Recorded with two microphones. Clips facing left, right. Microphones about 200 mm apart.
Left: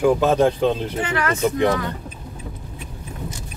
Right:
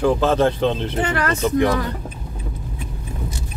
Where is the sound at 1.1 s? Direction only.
40° right (ahead or behind).